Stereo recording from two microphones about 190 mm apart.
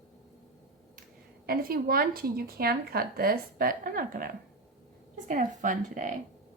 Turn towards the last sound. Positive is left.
turn(degrees=-45)  # may be behind; listen again after turning